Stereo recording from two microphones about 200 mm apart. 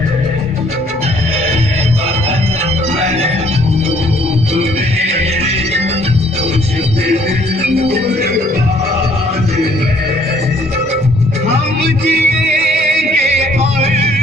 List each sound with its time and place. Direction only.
12.1 s music: 50° right (ahead or behind)
13.6 s music: 30° right (ahead or behind)